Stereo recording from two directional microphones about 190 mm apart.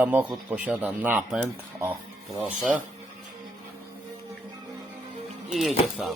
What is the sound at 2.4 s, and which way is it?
Speech, 5° right (ahead or behind).